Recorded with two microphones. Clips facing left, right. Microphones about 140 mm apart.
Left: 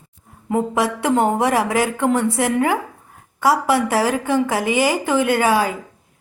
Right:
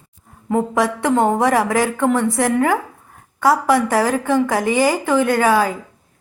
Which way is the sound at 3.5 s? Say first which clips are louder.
Right 2 dB; 25° left (ahead or behind).